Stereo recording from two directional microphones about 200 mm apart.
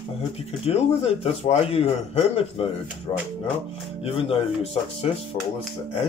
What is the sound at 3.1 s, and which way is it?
A man's voice, 20° left (ahead or behind).